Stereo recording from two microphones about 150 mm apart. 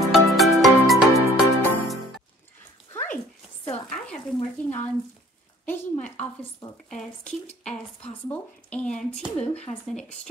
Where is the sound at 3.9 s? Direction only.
5° left (ahead or behind).